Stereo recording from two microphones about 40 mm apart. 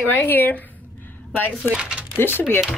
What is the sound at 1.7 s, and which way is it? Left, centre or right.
Speech, right.